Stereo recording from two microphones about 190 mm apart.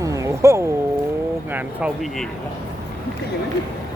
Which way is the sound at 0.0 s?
15° right (ahead or behind).